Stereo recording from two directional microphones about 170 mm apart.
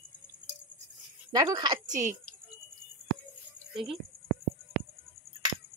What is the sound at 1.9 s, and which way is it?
Speech, 45° right (ahead or behind).